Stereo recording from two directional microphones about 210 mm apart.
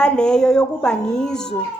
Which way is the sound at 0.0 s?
5° left (ahead or behind).